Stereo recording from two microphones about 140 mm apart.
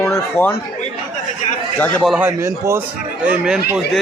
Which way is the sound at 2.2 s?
20° right (ahead or behind).